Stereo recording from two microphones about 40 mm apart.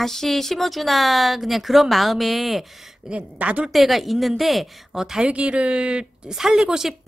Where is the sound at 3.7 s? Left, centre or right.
Centre.